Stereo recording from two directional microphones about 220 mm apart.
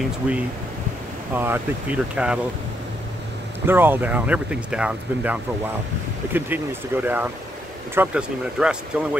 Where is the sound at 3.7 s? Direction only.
10° right (ahead or behind).